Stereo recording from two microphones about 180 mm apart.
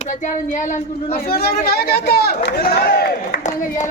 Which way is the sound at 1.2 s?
60° left (ahead or behind).